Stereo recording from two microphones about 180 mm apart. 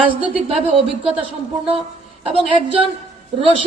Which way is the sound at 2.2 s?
30° right (ahead or behind).